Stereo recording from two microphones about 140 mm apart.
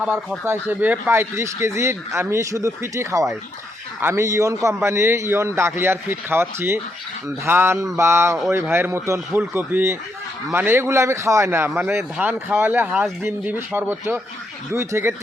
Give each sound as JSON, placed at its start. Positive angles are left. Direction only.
{"t": 0.0, "sound": "a man's voice", "side_deg": -10}